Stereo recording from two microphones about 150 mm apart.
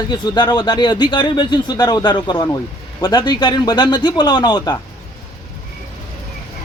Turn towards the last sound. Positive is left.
turn(degrees=25)  # may be behind; listen again after turning